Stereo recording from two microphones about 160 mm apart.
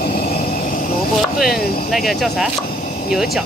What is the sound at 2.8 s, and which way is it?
Vehicle, 55° left (ahead or behind).